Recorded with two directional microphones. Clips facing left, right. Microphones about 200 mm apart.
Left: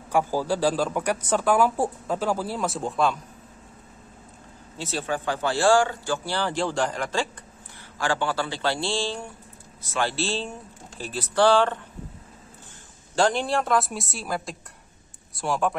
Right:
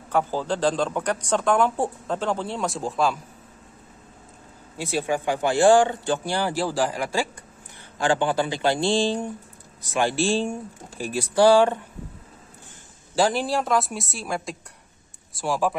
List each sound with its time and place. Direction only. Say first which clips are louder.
0.1 s speech: left 1 dB; 10° left (ahead or behind)
4.7 s speech: right 4 dB; 10° right (ahead or behind)
13.1 s a woman's voice: right 1 dB; 5° right (ahead or behind)